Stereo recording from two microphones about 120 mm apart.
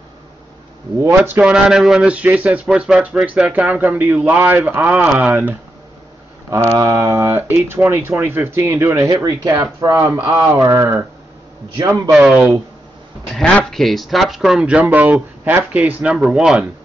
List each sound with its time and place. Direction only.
1.0 s speech: 20° right (ahead or behind)
1.5 s speech: 5° right (ahead or behind)
6.5 s speech: 25° right (ahead or behind)
7.3 s speech: 15° right (ahead or behind)
9.1 s speech: 35° right (ahead or behind); by 12.3 s 15° right (ahead or behind)
13.3 s speech: 5° left (ahead or behind)